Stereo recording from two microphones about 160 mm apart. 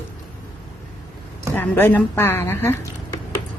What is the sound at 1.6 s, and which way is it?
A woman's voice, 10° left (ahead or behind).